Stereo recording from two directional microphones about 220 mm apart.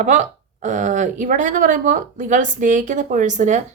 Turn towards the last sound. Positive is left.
turn(degrees=-35)  # may be behind; listen again after turning